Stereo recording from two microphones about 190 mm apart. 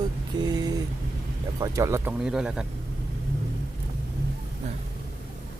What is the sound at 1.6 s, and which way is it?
Speech, 15° right (ahead or behind).